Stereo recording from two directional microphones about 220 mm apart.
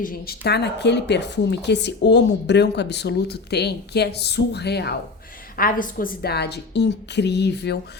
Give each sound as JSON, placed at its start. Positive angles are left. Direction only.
{"t": 0.0, "sound": "a woman's voice", "side_deg": 40}